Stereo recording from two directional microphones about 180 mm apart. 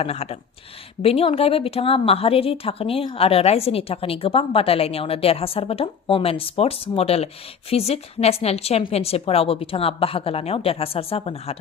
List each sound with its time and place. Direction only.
0.0 s a woman's voice: 35° left (ahead or behind)